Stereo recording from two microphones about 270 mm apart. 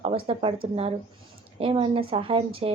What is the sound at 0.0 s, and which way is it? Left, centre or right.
Speech, centre.